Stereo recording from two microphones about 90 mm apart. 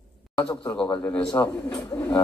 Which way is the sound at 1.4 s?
25° left (ahead or behind).